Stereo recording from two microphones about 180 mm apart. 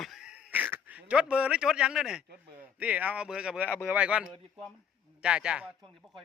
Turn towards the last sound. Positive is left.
turn(degrees=0)  # may be behind; listen again after turning